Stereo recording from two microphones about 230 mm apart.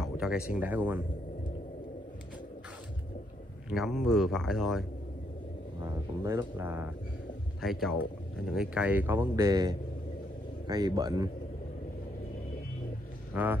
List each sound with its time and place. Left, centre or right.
0.0 s a sound: centre
0.5 s speech: centre
3.7 s speech: centre
5.8 s speech: centre
13.3 s a man's voice: centre